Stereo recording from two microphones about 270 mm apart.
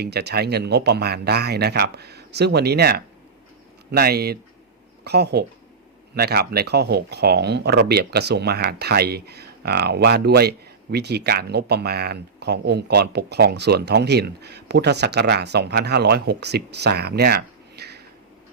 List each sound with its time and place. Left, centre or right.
0.0 s speech: right